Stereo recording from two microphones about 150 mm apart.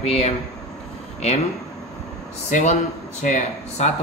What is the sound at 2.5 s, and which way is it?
A man's voice, 50° left (ahead or behind).